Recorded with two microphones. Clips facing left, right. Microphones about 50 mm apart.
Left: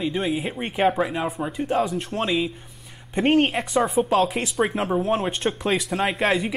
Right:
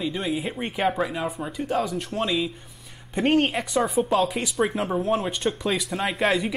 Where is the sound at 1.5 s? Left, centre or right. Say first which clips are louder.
Left 3 dB; centre.